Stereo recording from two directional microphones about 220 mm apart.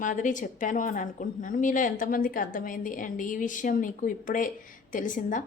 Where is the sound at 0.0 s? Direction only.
35° left (ahead or behind).